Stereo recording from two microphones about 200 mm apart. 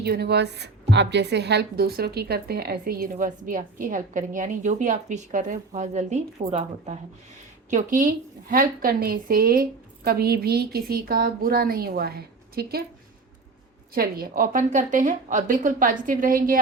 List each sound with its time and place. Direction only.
0.0 s a woman's voice: 55° right (ahead or behind)
13.9 s a woman's voice: 50° right (ahead or behind)